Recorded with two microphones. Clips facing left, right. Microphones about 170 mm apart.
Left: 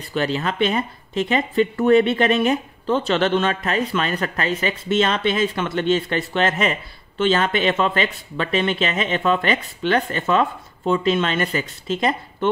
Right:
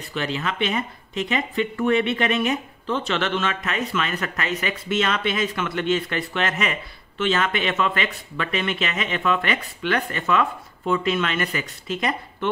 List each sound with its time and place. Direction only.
0.1 s speech: 35° left (ahead or behind)